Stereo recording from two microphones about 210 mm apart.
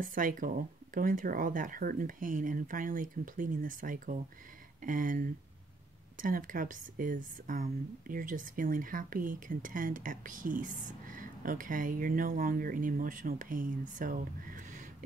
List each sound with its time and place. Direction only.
0.0 s speech: 40° right (ahead or behind)